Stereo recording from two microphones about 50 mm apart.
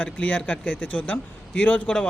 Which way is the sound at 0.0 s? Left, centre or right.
Left.